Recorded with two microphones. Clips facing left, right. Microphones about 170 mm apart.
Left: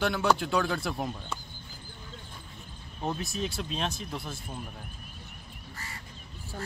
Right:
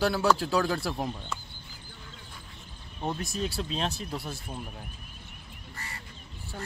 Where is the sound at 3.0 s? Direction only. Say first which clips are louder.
Right 1 dB; centre (ahead or behind).